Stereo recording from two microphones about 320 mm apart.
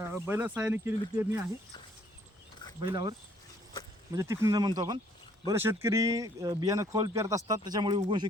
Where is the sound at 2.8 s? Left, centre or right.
Centre.